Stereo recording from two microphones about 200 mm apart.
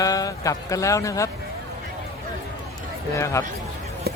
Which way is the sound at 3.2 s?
15° left (ahead or behind).